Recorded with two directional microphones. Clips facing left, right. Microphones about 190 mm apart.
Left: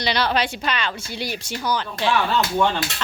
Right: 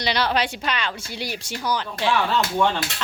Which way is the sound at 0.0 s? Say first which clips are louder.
Left 1 dB; 15° right (ahead or behind).